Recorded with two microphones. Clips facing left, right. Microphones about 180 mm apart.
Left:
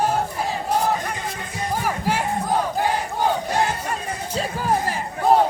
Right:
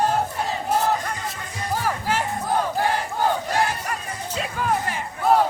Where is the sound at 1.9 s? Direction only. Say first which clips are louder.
Left 1 dB; 10° left (ahead or behind).